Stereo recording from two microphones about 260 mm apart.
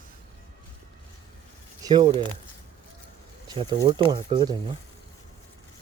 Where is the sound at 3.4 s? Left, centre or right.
Centre.